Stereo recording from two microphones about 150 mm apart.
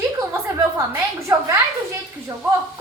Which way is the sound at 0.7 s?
20° right (ahead or behind).